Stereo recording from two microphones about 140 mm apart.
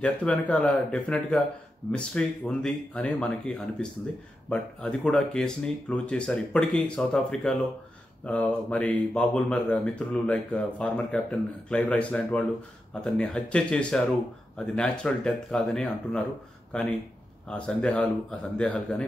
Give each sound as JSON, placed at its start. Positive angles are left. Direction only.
{"t": 0.0, "sound": "speech", "side_deg": 10}